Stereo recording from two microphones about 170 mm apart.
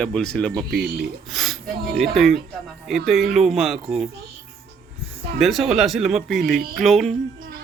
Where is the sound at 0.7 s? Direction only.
70° right (ahead or behind).